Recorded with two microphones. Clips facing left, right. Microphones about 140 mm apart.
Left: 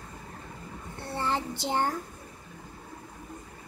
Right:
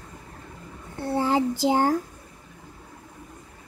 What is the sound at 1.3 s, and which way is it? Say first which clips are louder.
Child singing: right 8 dB; 90° right.